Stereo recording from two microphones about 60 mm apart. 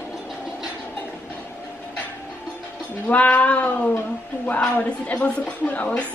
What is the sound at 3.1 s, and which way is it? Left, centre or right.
A woman's voice, left.